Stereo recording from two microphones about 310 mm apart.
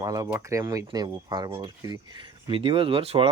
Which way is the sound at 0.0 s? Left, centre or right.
Centre.